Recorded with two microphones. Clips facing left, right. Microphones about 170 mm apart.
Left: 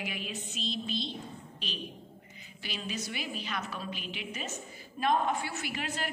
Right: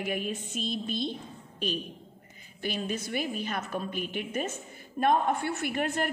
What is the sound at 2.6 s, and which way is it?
A woman's voice, 50° right (ahead or behind).